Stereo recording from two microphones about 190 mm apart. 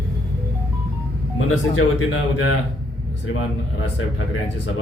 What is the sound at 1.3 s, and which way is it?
Speech, 90° left.